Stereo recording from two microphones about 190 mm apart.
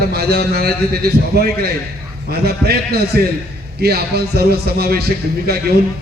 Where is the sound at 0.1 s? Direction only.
55° right (ahead or behind).